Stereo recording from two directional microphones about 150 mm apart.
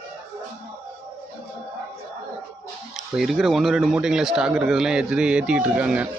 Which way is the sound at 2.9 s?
Centre (ahead or behind).